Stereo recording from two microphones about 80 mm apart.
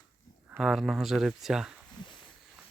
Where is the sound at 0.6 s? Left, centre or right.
Centre.